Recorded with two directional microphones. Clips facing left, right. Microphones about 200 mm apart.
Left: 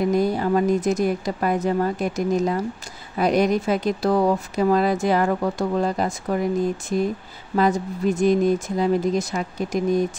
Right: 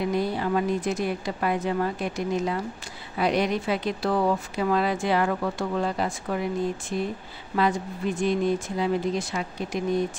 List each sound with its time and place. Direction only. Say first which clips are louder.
0.0 s speech: left 5 dB; 45° left (ahead or behind)